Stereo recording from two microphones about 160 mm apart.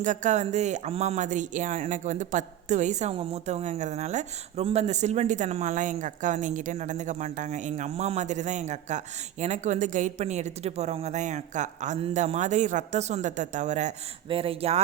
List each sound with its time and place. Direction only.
0.0 s speech: 50° right (ahead or behind)
14.3 s speech: 35° right (ahead or behind)